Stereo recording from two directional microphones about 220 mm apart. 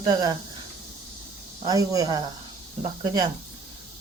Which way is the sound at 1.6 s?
15° right (ahead or behind).